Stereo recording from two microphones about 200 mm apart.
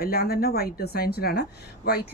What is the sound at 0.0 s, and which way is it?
Speech, 50° left (ahead or behind).